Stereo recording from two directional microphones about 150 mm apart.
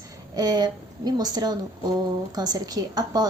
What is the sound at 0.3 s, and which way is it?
A woman's voice, 25° right (ahead or behind).